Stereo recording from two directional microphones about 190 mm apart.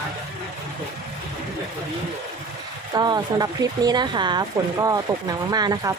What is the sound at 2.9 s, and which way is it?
Speech, 20° right (ahead or behind).